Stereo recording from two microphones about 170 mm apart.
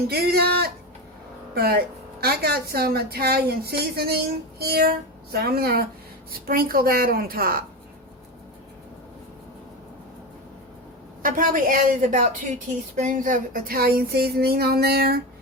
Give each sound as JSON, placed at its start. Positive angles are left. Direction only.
{"t": 0.1, "sound": "a woman's voice", "side_deg": -65}
{"t": 11.2, "sound": "a woman's voice", "side_deg": -55}